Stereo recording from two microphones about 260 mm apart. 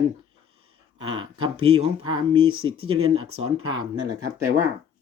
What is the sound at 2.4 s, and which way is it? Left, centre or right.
Speech, right.